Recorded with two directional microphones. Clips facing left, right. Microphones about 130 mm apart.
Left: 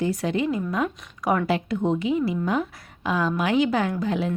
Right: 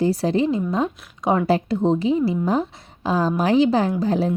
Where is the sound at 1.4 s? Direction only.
35° right (ahead or behind).